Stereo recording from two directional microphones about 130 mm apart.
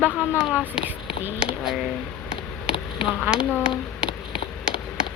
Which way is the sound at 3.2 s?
5° right (ahead or behind).